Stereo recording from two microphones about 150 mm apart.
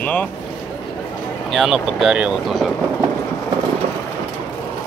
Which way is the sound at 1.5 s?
Centre (ahead or behind).